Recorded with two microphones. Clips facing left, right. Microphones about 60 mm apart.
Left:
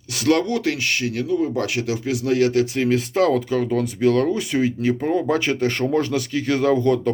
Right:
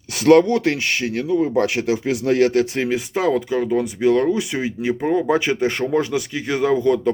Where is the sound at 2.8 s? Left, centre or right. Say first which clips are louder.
Left 2 dB; centre.